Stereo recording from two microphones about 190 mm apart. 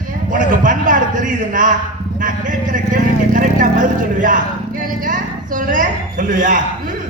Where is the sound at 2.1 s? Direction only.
45° right (ahead or behind).